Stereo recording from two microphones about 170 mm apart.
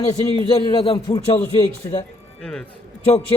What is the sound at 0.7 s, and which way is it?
A man's voice, 35° left (ahead or behind).